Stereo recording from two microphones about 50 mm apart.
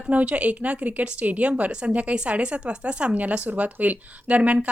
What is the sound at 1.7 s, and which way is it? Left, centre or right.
Speech, centre.